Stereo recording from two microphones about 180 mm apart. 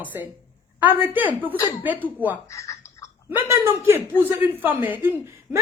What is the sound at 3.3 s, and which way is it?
A woman's voice, 15° right (ahead or behind).